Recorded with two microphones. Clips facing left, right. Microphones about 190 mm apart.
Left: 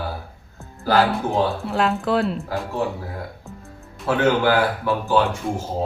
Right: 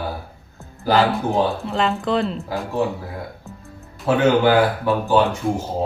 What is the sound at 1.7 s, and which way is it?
Speech, 5° left (ahead or behind).